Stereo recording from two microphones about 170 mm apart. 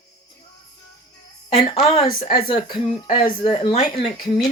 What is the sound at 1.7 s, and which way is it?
Speech, 35° left (ahead or behind).